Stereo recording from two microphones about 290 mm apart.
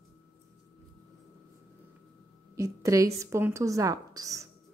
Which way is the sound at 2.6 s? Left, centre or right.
Centre.